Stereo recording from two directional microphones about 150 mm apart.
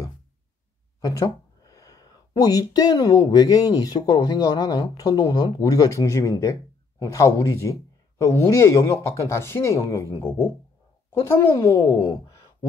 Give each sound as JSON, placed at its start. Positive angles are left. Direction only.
{"t": 1.0, "sound": "speech", "side_deg": 25}